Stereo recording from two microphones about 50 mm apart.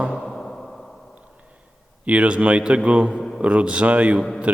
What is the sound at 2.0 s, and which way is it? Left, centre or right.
A man's voice, right.